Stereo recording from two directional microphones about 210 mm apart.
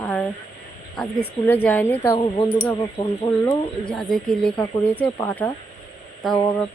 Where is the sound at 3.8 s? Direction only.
Centre (ahead or behind).